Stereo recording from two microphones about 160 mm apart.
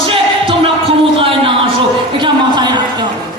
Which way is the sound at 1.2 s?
35° right (ahead or behind).